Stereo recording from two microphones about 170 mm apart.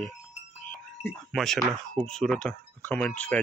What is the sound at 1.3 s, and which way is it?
Speech, centre (ahead or behind).